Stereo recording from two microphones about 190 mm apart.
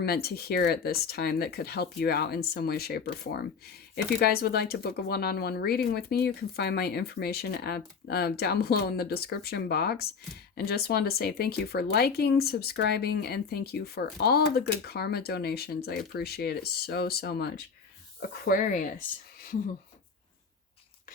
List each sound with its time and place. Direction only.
0.0 s speech: 55° left (ahead or behind)